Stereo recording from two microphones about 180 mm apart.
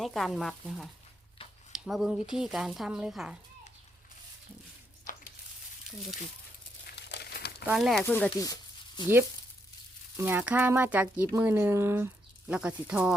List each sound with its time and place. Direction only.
0.0 s speech: centre (ahead or behind)
1.4 s a sound: 30° left (ahead or behind)
1.7 s speech: centre (ahead or behind)
6.9 s crumpling: 65° left (ahead or behind)
7.6 s speech: 5° right (ahead or behind)
8.0 s speech: 10° left (ahead or behind)
10.2 s speech: 10° right (ahead or behind)